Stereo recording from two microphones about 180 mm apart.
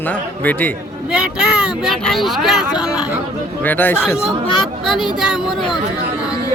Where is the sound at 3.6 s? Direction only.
10° left (ahead or behind).